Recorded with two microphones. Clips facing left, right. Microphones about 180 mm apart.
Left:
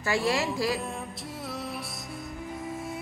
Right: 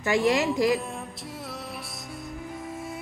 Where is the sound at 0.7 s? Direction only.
Centre (ahead or behind).